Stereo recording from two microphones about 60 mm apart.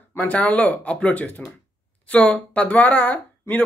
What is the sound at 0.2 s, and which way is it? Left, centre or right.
Speech, left.